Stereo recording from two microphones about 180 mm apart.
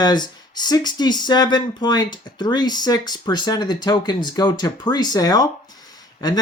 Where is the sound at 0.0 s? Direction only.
25° left (ahead or behind).